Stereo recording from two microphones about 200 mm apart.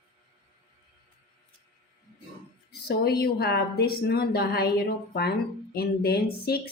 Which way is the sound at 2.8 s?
50° left (ahead or behind).